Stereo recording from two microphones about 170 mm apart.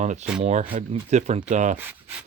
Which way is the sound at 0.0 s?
45° right (ahead or behind).